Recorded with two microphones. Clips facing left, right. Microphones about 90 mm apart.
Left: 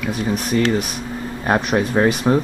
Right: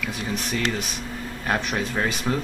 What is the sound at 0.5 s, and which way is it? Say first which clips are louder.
Speech: left 10 dB; 40° left (ahead or behind).